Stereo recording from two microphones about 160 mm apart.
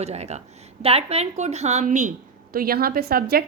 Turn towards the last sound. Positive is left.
turn(degrees=-70)  # may be behind; listen again after turning